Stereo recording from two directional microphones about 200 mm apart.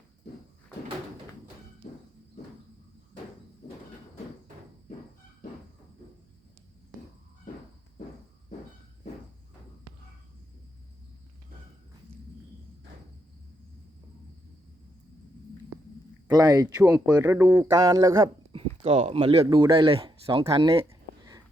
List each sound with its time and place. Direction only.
16.2 s speech: 20° right (ahead or behind)
16.7 s speech: 5° right (ahead or behind); by 20.7 s 25° right (ahead or behind)